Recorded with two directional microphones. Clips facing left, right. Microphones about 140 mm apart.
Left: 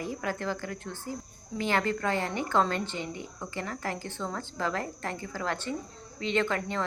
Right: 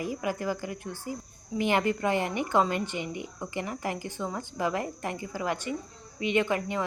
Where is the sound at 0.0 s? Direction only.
10° right (ahead or behind).